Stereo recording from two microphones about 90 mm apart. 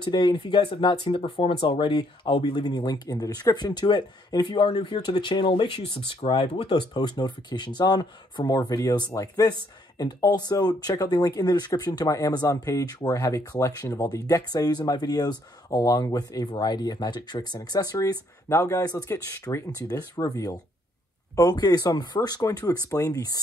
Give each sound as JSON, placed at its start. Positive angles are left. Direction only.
{"t": 0.0, "sound": "speech", "side_deg": 55}
{"t": 1.7, "sound": "speech", "side_deg": 65}
{"t": 6.9, "sound": "speech", "side_deg": 50}
{"t": 17.6, "sound": "speech", "side_deg": 40}